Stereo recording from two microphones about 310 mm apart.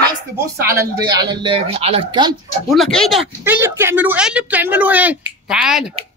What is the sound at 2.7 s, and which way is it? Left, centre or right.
Speech, centre.